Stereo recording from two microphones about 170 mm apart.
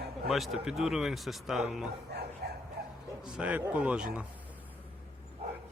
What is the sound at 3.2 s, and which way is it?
Speech, 5° right (ahead or behind).